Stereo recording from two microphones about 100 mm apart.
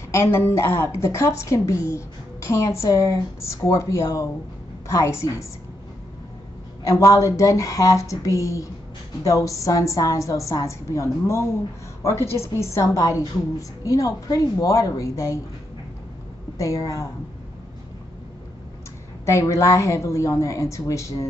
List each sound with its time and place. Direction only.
0.1 s a woman's voice: 25° left (ahead or behind)
6.8 s a woman's voice: 30° left (ahead or behind)
16.5 s a woman's voice: 35° left (ahead or behind)
19.2 s a woman's voice: 30° left (ahead or behind)